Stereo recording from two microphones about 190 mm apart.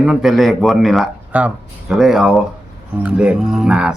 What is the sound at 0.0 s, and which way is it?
Speech, 5° right (ahead or behind).